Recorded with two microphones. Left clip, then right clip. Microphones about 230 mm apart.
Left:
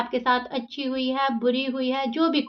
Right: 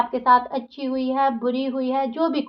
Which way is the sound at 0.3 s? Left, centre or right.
Left.